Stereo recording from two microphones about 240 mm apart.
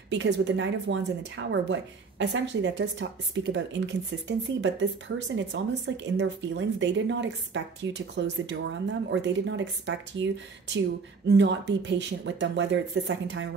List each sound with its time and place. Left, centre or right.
0.1 s speech: right